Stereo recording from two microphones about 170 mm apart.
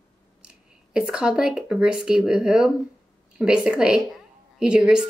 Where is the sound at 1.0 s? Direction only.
5° right (ahead or behind).